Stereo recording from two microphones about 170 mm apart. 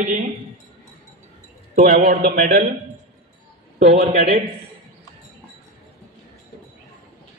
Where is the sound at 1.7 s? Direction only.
60° right (ahead or behind).